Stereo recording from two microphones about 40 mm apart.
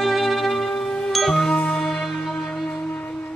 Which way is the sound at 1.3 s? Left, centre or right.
Left.